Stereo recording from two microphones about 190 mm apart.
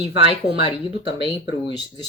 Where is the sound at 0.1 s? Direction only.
30° right (ahead or behind).